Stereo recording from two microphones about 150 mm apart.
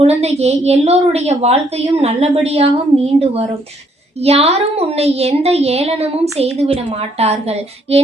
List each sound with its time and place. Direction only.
0.2 s a woman's voice: 45° right (ahead or behind)